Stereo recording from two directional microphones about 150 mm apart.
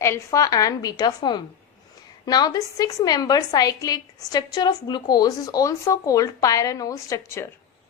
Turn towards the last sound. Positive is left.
turn(degrees=15)  # may be behind; listen again after turning